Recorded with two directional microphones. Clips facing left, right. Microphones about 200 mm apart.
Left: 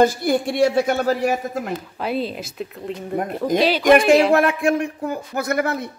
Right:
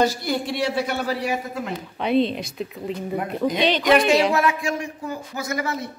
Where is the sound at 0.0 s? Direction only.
50° left (ahead or behind).